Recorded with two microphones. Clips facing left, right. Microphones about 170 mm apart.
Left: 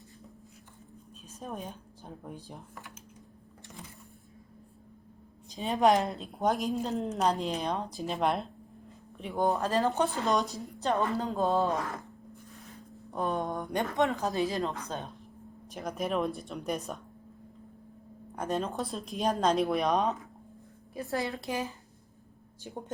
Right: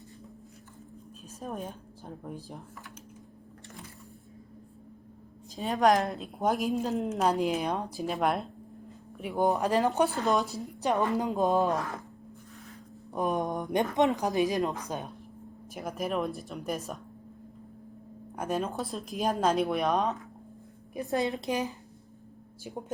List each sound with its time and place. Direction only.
1.4 s a woman's voice: centre (ahead or behind)
5.5 s a woman's voice: centre (ahead or behind); by 10.1 s 15° right (ahead or behind)
10.2 s a woman's voice: centre (ahead or behind)
10.8 s speech: 15° right (ahead or behind)
11.7 s a woman's voice: centre (ahead or behind)
13.1 s speech: 15° right (ahead or behind)
15.7 s a woman's voice: 5° right (ahead or behind)
18.5 s a woman's voice: centre (ahead or behind)
20.9 s a woman's voice: 20° right (ahead or behind)